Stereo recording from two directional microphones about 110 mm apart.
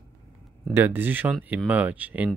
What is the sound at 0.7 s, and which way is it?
Speech, 20° right (ahead or behind).